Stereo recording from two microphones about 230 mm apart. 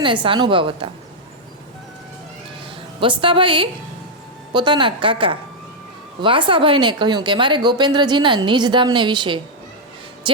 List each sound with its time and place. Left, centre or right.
0.0 s a woman's voice: right
2.6 s a woman's voice: right
10.3 s music: right